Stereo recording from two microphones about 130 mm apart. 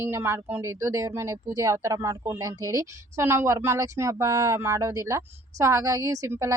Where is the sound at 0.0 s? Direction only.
20° right (ahead or behind).